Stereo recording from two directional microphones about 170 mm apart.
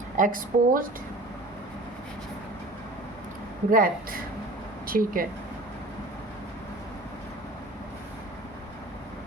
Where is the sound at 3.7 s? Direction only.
55° right (ahead or behind).